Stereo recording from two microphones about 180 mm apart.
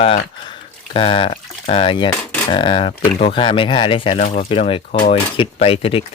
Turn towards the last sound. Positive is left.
turn(degrees=30)  # may be behind; listen again after turning